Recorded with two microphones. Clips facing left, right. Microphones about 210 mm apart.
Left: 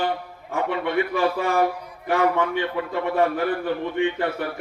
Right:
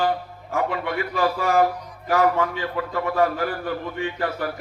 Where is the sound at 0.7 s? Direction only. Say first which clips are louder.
Left 3 dB; 25° left (ahead or behind).